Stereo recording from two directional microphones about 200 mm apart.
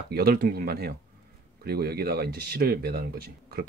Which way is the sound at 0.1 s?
50° right (ahead or behind).